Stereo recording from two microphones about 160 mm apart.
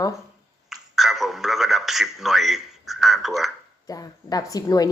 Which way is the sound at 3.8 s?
20° left (ahead or behind).